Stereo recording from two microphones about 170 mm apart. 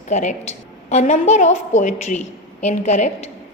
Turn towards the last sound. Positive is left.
turn(degrees=45)  # may be behind; listen again after turning